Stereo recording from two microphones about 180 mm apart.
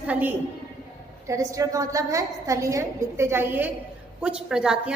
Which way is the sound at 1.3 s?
20° right (ahead or behind).